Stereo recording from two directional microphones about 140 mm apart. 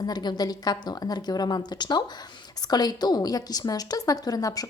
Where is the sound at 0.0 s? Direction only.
30° left (ahead or behind).